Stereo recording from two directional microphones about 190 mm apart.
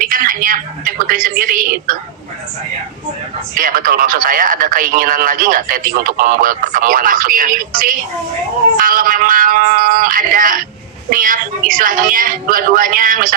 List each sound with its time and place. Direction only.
0.0 s a woman's voice: 45° right (ahead or behind)
3.6 s speech: 45° right (ahead or behind)